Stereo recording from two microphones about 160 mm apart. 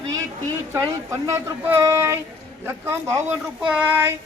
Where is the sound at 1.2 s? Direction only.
20° right (ahead or behind).